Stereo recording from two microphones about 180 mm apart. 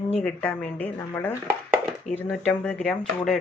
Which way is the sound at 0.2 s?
10° left (ahead or behind).